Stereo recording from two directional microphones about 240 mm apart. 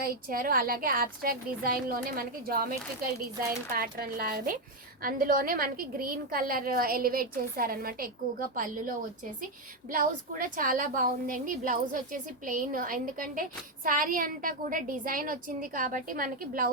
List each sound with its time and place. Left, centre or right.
0.0 s a woman's voice: right
9.9 s a woman's voice: right